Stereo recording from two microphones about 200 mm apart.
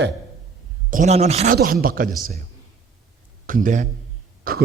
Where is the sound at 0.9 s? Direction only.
40° right (ahead or behind).